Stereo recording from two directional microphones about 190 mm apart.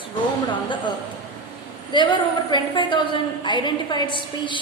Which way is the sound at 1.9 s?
25° left (ahead or behind).